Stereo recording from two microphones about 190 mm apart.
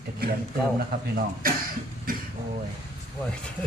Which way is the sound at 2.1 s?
50° right (ahead or behind).